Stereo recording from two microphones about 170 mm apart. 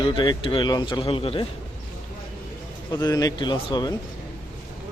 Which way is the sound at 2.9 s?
20° left (ahead or behind).